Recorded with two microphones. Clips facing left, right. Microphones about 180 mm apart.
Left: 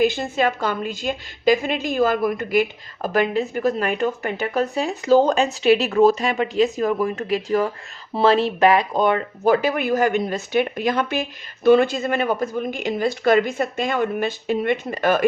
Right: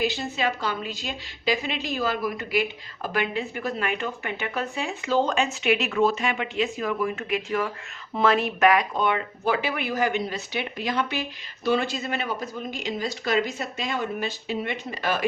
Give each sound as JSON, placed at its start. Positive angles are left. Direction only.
{"t": 0.0, "sound": "a woman's voice", "side_deg": 50}